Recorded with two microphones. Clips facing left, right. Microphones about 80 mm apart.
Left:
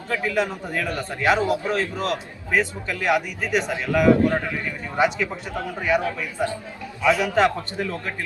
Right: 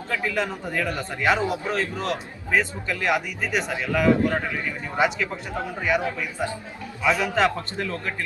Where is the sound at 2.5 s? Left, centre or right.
Centre.